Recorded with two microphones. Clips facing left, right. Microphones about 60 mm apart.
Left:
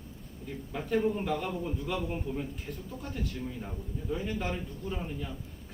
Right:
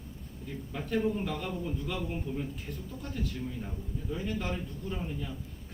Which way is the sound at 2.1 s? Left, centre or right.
Left.